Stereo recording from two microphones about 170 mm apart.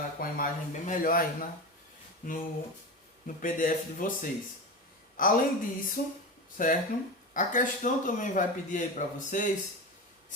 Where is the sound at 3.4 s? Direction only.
50° left (ahead or behind).